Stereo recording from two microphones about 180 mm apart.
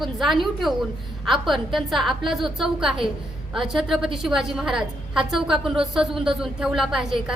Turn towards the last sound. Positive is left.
turn(degrees=0)  # may be behind; listen again after turning